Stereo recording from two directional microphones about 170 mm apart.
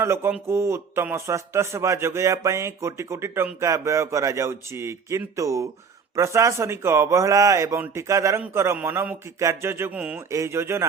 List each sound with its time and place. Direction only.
0.0 s speech: 15° right (ahead or behind)